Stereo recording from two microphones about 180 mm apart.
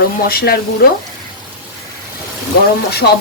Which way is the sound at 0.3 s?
55° left (ahead or behind).